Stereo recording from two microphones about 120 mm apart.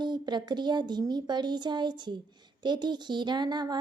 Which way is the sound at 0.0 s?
40° right (ahead or behind).